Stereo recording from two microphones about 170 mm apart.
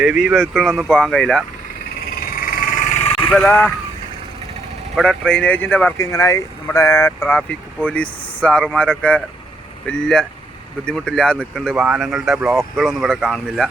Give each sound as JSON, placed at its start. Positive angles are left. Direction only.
{"t": 0.0, "sound": "speech", "side_deg": -5}
{"t": 2.2, "sound": "a sound", "side_deg": 60}
{"t": 3.3, "sound": "speech", "side_deg": 10}
{"t": 4.9, "sound": "speech", "side_deg": 5}